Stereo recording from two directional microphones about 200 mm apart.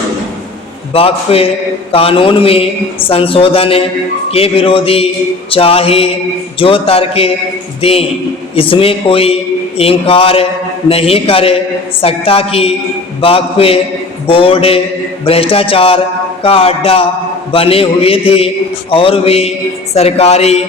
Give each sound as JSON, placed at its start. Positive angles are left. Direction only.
{"t": 0.9, "sound": "a man's voice", "side_deg": 30}